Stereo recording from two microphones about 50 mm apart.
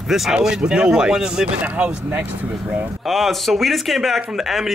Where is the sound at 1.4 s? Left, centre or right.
Right.